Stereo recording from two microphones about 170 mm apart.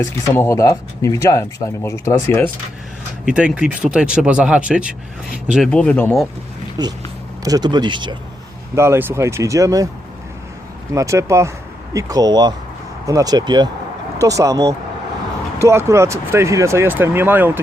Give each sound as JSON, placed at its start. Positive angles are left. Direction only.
{"t": 0.0, "sound": "speech", "side_deg": 15}
{"t": 3.2, "sound": "speech", "side_deg": -5}
{"t": 5.7, "sound": "speech", "side_deg": 10}
{"t": 6.8, "sound": "speech", "side_deg": -20}
{"t": 8.7, "sound": "speech", "side_deg": -15}
{"t": 10.9, "sound": "speech", "side_deg": -20}